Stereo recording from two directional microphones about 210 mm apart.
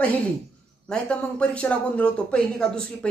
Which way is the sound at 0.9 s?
5° left (ahead or behind).